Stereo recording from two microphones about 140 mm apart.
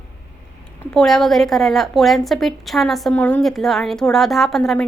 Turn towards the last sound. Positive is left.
turn(degrees=0)  # may be behind; listen again after turning